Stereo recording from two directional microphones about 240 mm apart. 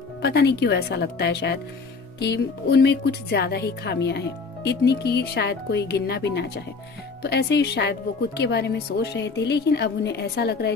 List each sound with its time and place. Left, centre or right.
0.2 s speech: left